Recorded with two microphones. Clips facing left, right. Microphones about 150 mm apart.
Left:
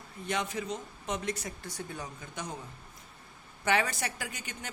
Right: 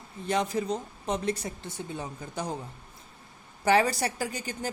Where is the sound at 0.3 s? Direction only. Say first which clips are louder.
Right 6 dB; 35° right (ahead or behind).